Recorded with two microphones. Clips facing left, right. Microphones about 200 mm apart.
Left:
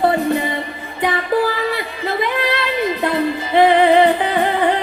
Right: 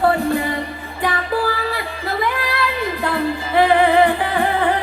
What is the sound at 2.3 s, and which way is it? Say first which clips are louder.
Music: left 3 dB; 20° left (ahead or behind).